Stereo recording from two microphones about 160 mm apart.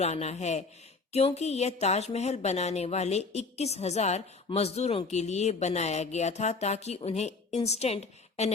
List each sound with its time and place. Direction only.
0.0 s speech: 40° left (ahead or behind)